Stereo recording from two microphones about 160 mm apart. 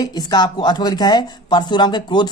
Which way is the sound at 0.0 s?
25° left (ahead or behind).